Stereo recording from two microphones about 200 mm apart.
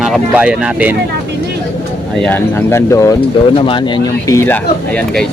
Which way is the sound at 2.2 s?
10° left (ahead or behind).